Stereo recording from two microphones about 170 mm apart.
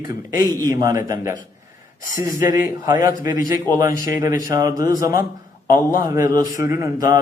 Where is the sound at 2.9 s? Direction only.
20° right (ahead or behind).